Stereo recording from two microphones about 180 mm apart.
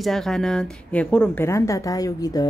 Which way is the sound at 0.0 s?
Centre (ahead or behind).